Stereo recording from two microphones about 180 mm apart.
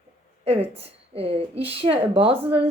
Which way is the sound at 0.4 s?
35° right (ahead or behind).